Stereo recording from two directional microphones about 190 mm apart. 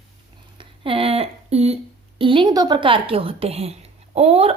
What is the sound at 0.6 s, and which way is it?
A woman's voice, 30° right (ahead or behind).